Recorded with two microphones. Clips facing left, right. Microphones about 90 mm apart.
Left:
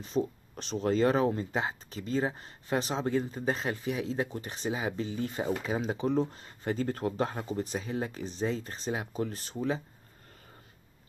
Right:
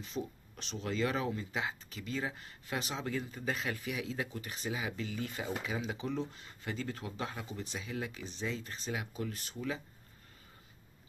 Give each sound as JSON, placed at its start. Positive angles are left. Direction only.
{"t": 0.0, "sound": "speech", "side_deg": 35}